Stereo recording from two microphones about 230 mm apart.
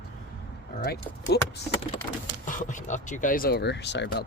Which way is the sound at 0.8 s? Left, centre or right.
Left.